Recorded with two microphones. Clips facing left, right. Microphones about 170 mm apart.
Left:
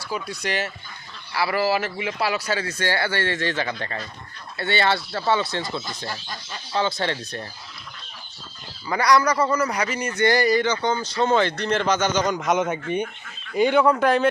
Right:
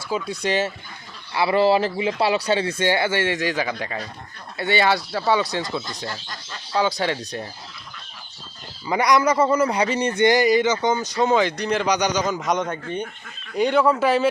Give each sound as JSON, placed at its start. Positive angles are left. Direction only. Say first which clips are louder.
{"t": 0.4, "sound": "speech", "louder": "right 6 dB", "side_deg": -20}
{"t": 6.7, "sound": "speech", "louder": "right 2 dB", "side_deg": -10}
{"t": 8.9, "sound": "speech", "louder": "right 1 dB", "side_deg": -20}
{"t": 10.2, "sound": "speech", "louder": "right 2 dB", "side_deg": -15}
{"t": 12.2, "sound": "speech", "louder": "left 1 dB", "side_deg": 0}